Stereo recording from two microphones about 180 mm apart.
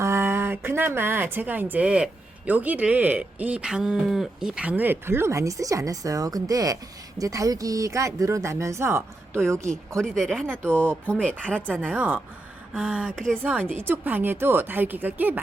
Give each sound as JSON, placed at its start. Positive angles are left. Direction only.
{"t": 0.0, "sound": "speech", "side_deg": -15}
{"t": 10.0, "sound": "speech", "side_deg": 5}
{"t": 10.4, "sound": "speech", "side_deg": -10}
{"t": 11.1, "sound": "speech", "side_deg": 5}
{"t": 11.3, "sound": "speech", "side_deg": -10}
{"t": 13.4, "sound": "speech", "side_deg": -10}